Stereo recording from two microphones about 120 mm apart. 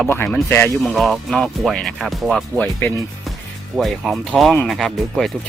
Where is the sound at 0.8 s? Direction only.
Centre (ahead or behind).